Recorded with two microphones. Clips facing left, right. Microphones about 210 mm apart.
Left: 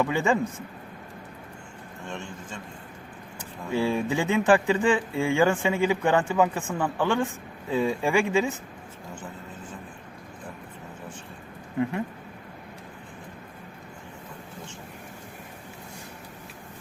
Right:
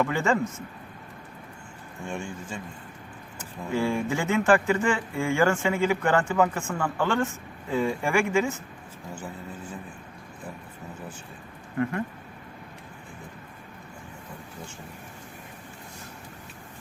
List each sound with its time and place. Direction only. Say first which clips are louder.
0.0 s speech: left 1 dB; 15° left (ahead or behind)
2.0 s a man's voice: right 3 dB; 10° right (ahead or behind)
3.3 s speech: left 1 dB; 15° left (ahead or behind)
11.8 s speech: even; 15° left (ahead or behind)